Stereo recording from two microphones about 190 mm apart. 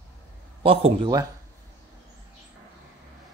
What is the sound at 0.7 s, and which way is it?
Speech, 25° right (ahead or behind).